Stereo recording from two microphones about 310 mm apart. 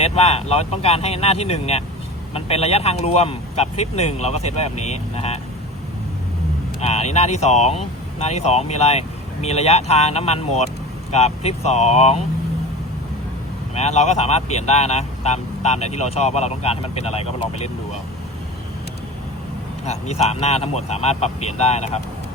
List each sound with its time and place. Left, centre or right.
0.0 s speech: centre
6.7 s speech: left
13.7 s speech: left
19.8 s speech: left